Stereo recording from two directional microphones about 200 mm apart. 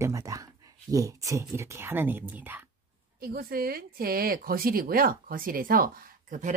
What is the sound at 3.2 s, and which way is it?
Speech, 50° right (ahead or behind).